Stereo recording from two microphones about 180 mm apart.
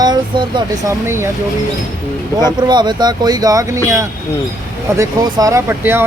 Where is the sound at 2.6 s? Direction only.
25° right (ahead or behind).